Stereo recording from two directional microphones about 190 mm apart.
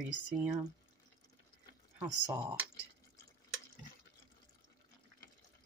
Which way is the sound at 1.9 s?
10° right (ahead or behind).